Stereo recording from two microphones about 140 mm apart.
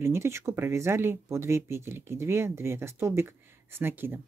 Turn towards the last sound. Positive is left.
turn(degrees=-15)  # may be behind; listen again after turning